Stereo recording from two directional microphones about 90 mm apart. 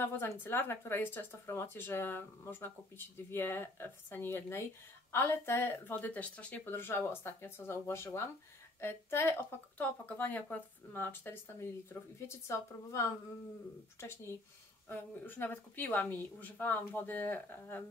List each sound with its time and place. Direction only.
0.4 s speech: 25° left (ahead or behind)